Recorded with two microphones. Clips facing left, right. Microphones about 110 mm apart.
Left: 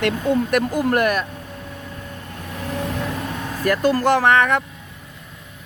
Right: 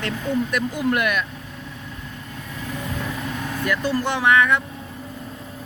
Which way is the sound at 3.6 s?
45° left (ahead or behind).